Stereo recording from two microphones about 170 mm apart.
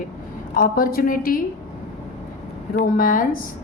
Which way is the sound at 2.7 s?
55° left (ahead or behind).